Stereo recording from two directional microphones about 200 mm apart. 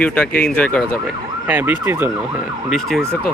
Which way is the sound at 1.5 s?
10° right (ahead or behind).